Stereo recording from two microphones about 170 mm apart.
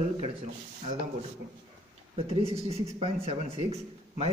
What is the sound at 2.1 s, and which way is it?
Speech, 35° right (ahead or behind).